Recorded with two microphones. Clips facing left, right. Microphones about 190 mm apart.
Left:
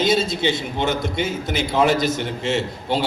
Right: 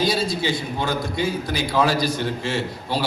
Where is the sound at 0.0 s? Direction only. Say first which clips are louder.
Left 3 dB; 25° left (ahead or behind).